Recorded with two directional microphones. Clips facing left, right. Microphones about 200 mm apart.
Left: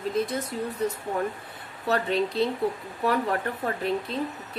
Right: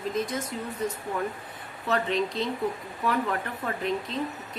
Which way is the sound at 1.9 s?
35° left (ahead or behind).